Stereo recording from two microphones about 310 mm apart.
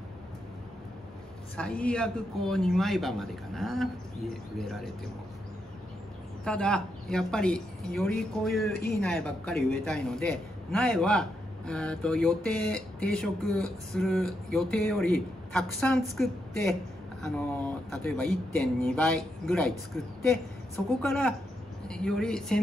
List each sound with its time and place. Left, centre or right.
1.6 s a man's voice: centre
6.4 s a man's voice: centre
8.7 s speech: left
9.0 s a man's voice: centre